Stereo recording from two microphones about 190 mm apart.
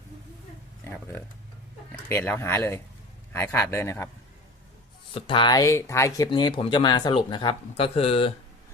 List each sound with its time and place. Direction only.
2.0 s speech: 10° left (ahead or behind)
5.1 s speech: 30° left (ahead or behind)